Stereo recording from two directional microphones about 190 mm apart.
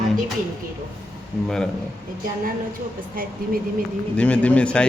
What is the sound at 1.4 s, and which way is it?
Speech, 5° left (ahead or behind).